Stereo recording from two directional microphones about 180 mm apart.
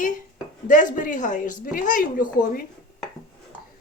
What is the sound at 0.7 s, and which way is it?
Speech, 45° left (ahead or behind).